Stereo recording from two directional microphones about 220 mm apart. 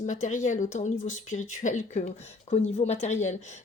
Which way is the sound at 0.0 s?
35° left (ahead or behind).